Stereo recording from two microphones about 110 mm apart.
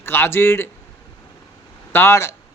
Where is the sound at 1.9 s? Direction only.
20° left (ahead or behind).